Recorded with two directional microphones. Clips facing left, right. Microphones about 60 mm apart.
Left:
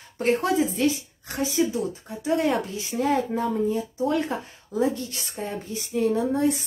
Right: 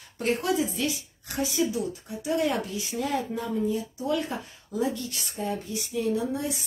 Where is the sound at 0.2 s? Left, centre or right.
Left.